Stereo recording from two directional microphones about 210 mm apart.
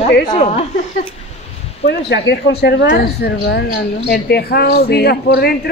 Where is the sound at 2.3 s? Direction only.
50° left (ahead or behind).